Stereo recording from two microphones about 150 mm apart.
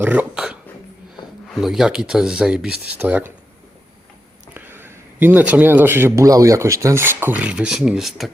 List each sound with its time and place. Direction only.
0.0 s speech: 10° right (ahead or behind)
1.5 s a man's voice: 5° right (ahead or behind)
4.5 s a man's voice: 15° right (ahead or behind)